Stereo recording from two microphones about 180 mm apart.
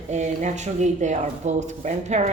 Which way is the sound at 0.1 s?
40° right (ahead or behind).